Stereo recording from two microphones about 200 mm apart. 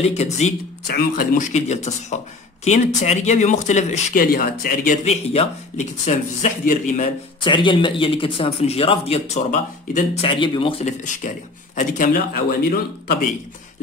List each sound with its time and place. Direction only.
0.0 s speech: 35° left (ahead or behind)
0.8 s speech: 45° left (ahead or behind)
5.0 s speech: 30° left (ahead or behind)
7.4 s speech: 25° left (ahead or behind)